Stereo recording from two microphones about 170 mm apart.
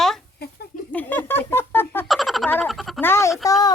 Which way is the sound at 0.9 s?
10° left (ahead or behind).